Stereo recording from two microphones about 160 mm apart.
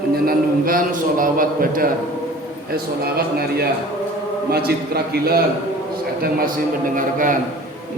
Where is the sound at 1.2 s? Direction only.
60° right (ahead or behind).